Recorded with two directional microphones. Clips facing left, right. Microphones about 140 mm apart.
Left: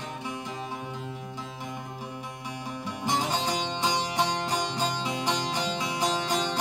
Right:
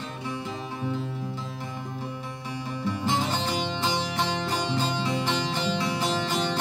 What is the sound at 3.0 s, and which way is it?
Music, 15° left (ahead or behind).